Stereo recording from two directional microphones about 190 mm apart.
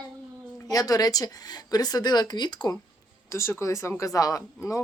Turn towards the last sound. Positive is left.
turn(degrees=15)  # may be behind; listen again after turning